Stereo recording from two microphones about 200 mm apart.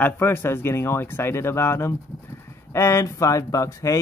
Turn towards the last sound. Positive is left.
turn(degrees=15)  # may be behind; listen again after turning